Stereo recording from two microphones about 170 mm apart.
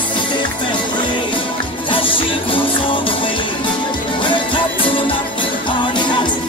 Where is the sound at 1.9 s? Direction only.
30° left (ahead or behind).